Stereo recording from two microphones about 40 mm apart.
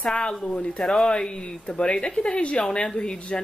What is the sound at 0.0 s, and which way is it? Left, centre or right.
A woman's voice, left.